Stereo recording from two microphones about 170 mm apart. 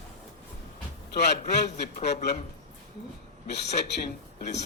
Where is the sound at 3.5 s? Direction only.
85° left.